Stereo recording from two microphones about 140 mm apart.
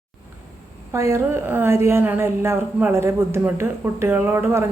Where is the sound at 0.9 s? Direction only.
20° right (ahead or behind).